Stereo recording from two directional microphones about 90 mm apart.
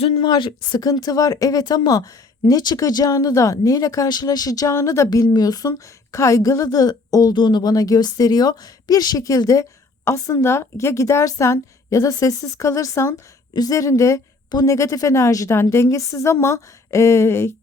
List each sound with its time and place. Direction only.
0.2 s a woman's voice: 60° left (ahead or behind); by 4.7 s 45° left (ahead or behind)
4.7 s a woman's voice: 30° left (ahead or behind)
7.3 s a woman's voice: 60° left (ahead or behind); by 13.1 s 30° left (ahead or behind)
13.5 s a woman's voice: 45° left (ahead or behind)